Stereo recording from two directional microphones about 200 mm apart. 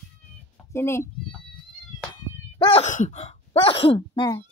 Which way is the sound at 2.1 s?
25° left (ahead or behind).